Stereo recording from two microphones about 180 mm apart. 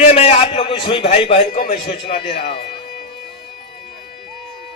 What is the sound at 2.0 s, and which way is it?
Speech, 30° left (ahead or behind).